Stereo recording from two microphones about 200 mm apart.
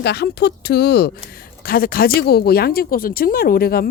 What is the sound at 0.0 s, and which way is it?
Speech, 55° left (ahead or behind).